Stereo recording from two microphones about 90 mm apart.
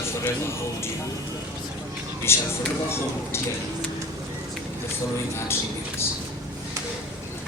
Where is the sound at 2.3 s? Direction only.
30° left (ahead or behind).